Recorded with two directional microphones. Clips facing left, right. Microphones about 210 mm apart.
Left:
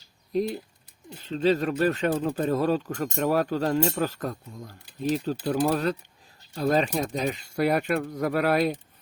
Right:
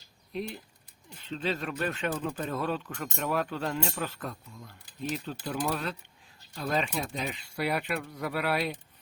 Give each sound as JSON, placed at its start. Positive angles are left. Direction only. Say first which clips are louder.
{"t": 0.3, "sound": "speech", "louder": "left 9 dB", "side_deg": 40}